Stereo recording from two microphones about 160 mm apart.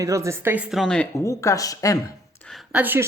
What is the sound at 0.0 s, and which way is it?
Speech, 20° right (ahead or behind).